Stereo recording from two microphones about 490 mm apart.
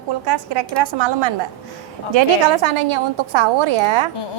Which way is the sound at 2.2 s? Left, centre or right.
Right.